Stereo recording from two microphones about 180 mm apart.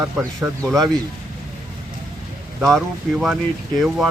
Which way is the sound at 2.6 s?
Centre (ahead or behind).